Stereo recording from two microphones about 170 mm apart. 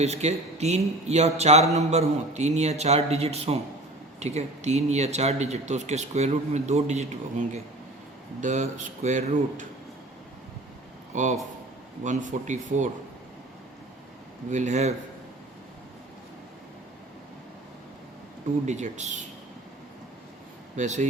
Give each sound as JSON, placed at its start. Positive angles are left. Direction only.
{"t": 0.0, "sound": "speech", "side_deg": -40}
{"t": 11.1, "sound": "a man's voice", "side_deg": -45}
{"t": 14.5, "sound": "speech", "side_deg": -45}
{"t": 18.6, "sound": "speech", "side_deg": -45}
{"t": 20.7, "sound": "speech", "side_deg": -45}